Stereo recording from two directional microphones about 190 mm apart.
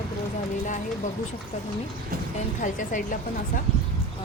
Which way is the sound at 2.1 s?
50° right (ahead or behind).